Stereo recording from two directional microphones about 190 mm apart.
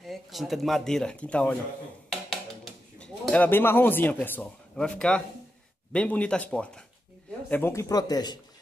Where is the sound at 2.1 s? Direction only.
Centre (ahead or behind).